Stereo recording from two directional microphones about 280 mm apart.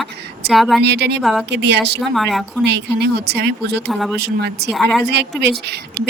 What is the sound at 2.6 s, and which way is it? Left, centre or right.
Speech, right.